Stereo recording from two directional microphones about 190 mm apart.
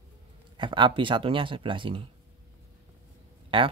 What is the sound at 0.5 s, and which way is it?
Speech, 25° right (ahead or behind).